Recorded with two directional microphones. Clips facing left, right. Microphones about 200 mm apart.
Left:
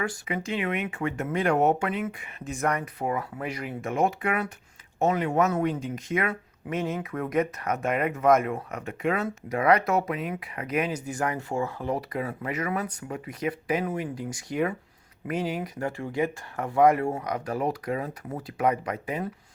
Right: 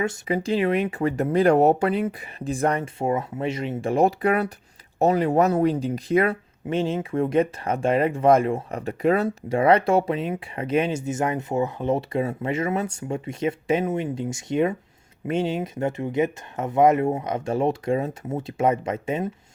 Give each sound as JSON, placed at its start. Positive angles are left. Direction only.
{"t": 0.3, "sound": "speech", "side_deg": -35}